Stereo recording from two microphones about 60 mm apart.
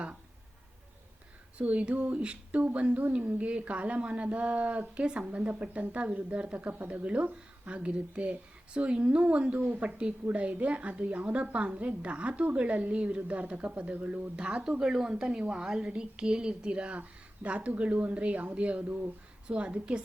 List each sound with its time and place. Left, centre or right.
1.5 s a woman's voice: right